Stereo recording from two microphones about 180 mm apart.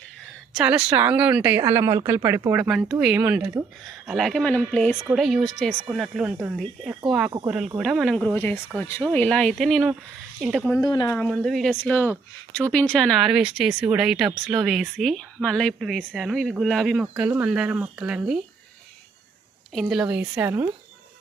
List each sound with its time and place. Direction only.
0.5 s a woman's voice: 5° right (ahead or behind)
10.8 s speech: 25° left (ahead or behind)
11.2 s a woman's voice: centre (ahead or behind)
19.7 s speech: centre (ahead or behind)